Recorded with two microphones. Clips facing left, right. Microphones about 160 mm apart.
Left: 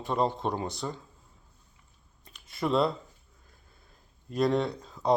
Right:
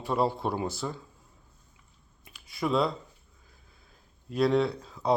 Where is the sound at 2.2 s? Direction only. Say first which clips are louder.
Even; 5° right (ahead or behind).